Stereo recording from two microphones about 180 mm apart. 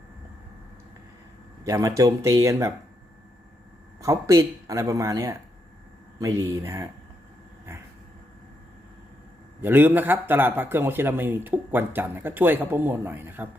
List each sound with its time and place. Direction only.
1.6 s a man's voice: 15° right (ahead or behind)
4.0 s a man's voice: 15° right (ahead or behind)
9.6 s a man's voice: 10° right (ahead or behind)